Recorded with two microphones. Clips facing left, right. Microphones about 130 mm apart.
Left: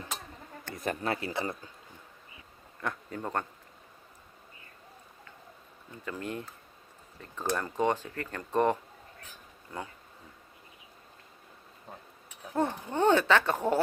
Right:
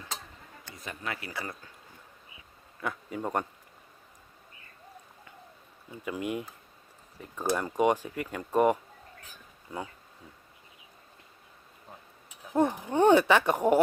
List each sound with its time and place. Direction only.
0.6 s a sound: 50° left (ahead or behind)
1.0 s speech: 30° left (ahead or behind)
2.8 s speech: 5° right (ahead or behind)
5.9 s speech: 15° right (ahead or behind)
12.5 s speech: 15° right (ahead or behind)